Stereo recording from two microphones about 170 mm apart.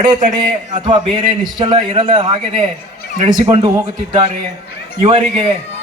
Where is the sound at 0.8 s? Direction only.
25° right (ahead or behind).